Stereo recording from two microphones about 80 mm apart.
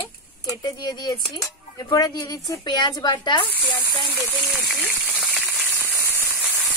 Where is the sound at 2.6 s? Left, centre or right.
Left.